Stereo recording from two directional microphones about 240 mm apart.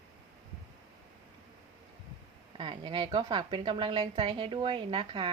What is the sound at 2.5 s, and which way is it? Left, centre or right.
A woman's voice, centre.